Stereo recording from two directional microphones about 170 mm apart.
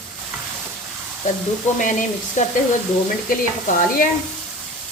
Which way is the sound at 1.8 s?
50° left (ahead or behind).